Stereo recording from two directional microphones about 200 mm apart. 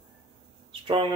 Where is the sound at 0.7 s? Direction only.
25° right (ahead or behind).